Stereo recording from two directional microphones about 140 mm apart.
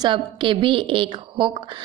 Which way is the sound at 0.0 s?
35° right (ahead or behind).